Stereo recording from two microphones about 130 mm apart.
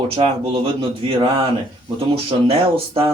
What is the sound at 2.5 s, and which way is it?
Speech, 50° right (ahead or behind).